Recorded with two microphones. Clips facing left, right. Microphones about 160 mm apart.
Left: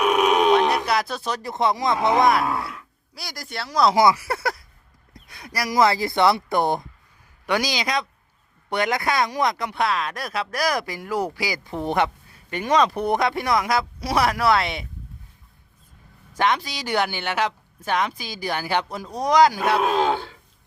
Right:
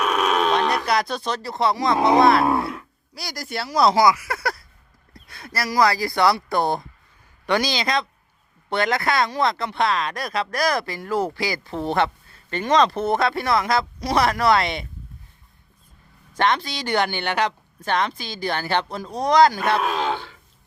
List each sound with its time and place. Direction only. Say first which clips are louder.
0.0 s a sound: left 3 dB; 15° left (ahead or behind)
0.9 s speech: right 1 dB; 5° left (ahead or behind)
1.4 s speech: even; 20° left (ahead or behind)
2.0 s speech: right 4 dB; 20° right (ahead or behind)
3.2 s speech: right 3 dB; centre (ahead or behind)
3.9 s speech: even; 30° left (ahead or behind); by 14.8 s 5° left (ahead or behind)
16.3 s speech: right 1 dB; 10° left (ahead or behind)